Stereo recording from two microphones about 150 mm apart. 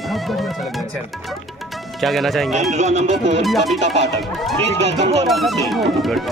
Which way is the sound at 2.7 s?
45° right (ahead or behind).